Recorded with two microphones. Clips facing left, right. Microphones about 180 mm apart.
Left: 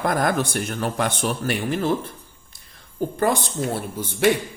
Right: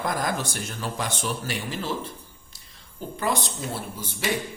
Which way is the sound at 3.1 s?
50° left (ahead or behind).